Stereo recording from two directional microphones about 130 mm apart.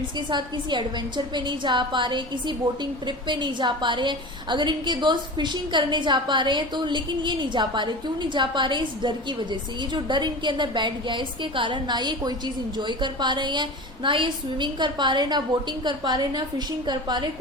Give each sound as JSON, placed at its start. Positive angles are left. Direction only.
{"t": 0.3, "sound": "a woman's voice", "side_deg": -35}